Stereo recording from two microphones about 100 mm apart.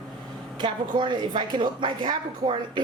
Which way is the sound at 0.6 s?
50° right (ahead or behind).